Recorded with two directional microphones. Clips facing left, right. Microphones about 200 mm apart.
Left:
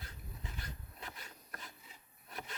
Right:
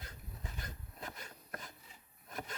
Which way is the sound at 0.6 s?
45° right (ahead or behind).